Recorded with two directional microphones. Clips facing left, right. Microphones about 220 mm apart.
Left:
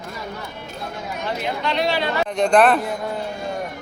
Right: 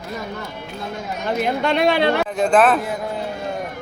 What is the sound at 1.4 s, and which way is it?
Speech, 50° right (ahead or behind).